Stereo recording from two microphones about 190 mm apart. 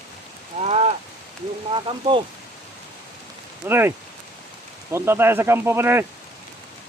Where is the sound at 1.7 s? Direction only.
25° right (ahead or behind).